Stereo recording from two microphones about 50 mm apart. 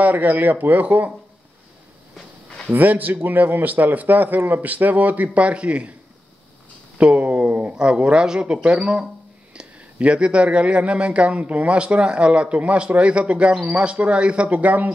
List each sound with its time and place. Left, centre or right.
0.0 s a man's voice: right
2.7 s a man's voice: right
7.0 s speech: right